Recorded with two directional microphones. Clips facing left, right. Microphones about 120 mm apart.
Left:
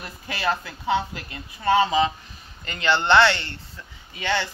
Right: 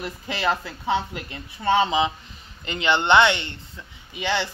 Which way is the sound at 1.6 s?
20° right (ahead or behind).